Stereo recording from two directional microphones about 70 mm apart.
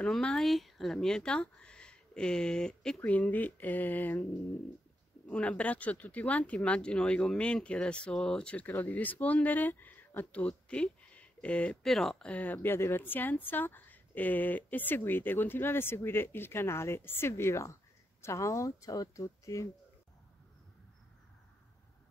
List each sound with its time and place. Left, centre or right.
0.0 s speech: centre
3.0 s a woman's voice: left
10.4 s speech: centre
12.3 s a woman's voice: left
12.6 s a woman's voice: left